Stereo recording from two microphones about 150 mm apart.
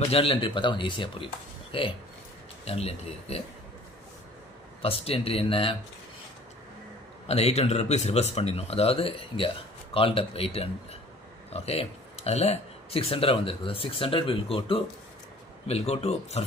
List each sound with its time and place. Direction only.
0.1 s speech: 40° left (ahead or behind)
4.8 s speech: 40° left (ahead or behind)
7.2 s speech: 45° left (ahead or behind)